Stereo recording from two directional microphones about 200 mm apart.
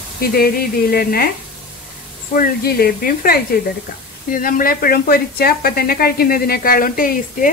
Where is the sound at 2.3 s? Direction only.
45° left (ahead or behind).